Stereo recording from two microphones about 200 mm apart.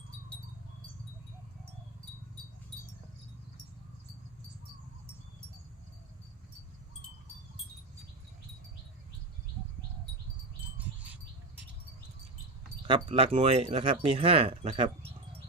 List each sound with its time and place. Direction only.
12.8 s speech: 25° right (ahead or behind)